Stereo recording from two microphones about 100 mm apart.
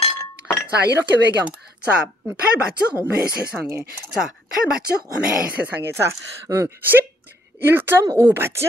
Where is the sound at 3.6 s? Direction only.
25° right (ahead or behind).